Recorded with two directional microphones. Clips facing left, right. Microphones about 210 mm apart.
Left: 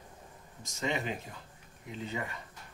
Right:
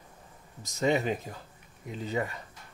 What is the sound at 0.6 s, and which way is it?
Speech, 40° right (ahead or behind).